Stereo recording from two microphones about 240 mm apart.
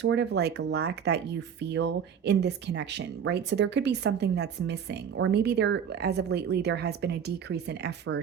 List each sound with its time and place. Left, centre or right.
0.0 s speech: right